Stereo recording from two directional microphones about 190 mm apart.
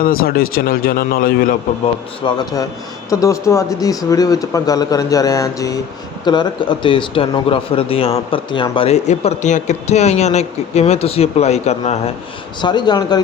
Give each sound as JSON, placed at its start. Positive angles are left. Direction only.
{"t": 0.0, "sound": "speech", "side_deg": 50}
{"t": 2.2, "sound": "speech", "side_deg": 20}